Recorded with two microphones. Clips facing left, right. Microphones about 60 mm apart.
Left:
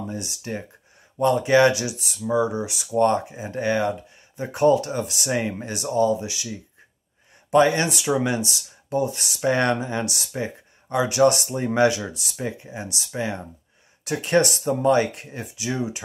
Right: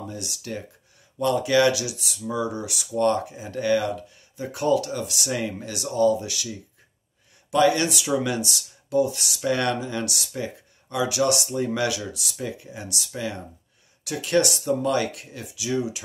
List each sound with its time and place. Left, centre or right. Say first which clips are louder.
0.0 s speech: left 3 dB; left